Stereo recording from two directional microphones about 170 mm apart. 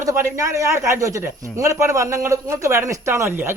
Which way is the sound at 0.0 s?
15° right (ahead or behind).